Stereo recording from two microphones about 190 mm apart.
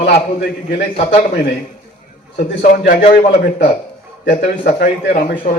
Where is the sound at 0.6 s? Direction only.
65° left (ahead or behind).